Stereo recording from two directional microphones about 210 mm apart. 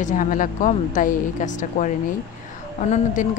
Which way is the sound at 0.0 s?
40° left (ahead or behind).